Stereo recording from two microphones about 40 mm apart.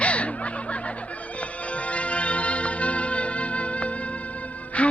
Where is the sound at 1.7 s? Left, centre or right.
Left.